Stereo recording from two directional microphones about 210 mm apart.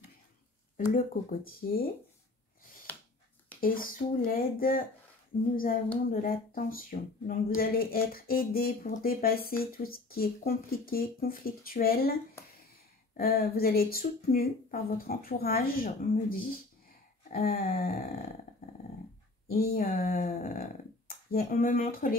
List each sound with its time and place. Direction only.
0.7 s speech: 40° left (ahead or behind)
3.6 s speech: 40° left (ahead or behind)
6.0 s speech: 45° left (ahead or behind)
19.4 s speech: 45° left (ahead or behind)